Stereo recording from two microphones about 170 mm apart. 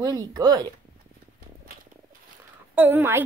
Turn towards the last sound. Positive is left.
turn(degrees=-15)  # may be behind; listen again after turning